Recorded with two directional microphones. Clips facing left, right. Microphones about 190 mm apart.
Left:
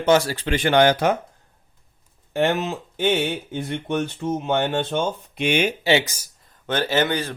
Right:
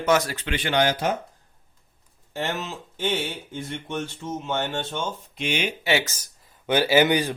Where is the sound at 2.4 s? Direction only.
60° left (ahead or behind).